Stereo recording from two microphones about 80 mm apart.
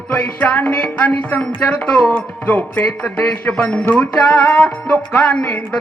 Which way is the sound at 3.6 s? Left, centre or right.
Centre.